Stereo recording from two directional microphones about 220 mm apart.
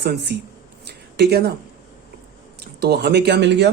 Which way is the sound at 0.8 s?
50° right (ahead or behind).